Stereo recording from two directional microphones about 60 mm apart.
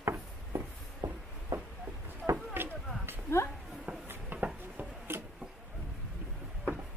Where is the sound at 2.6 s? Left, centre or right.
Right.